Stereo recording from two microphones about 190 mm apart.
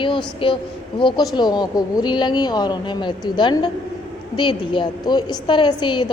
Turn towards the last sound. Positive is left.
turn(degrees=25)  # may be behind; listen again after turning